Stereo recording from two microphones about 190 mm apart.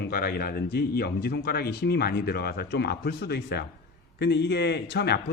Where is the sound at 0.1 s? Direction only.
55° left (ahead or behind).